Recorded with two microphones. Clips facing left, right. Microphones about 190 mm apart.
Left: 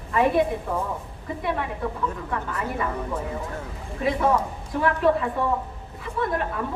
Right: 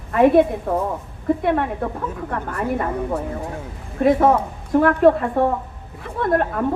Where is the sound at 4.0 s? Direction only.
50° right (ahead or behind).